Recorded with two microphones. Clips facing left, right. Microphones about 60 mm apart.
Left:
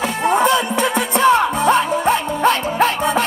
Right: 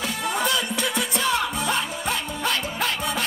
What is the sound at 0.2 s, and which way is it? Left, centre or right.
Music, left.